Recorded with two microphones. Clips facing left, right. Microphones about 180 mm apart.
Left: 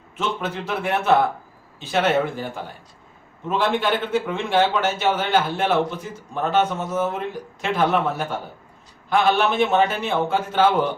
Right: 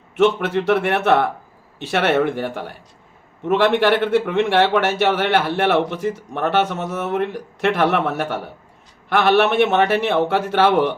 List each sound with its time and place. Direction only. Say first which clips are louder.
0.2 s speech: right 10 dB; 70° right (ahead or behind)